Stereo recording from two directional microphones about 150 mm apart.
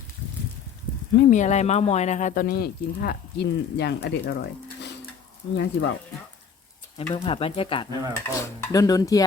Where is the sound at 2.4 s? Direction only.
90° left.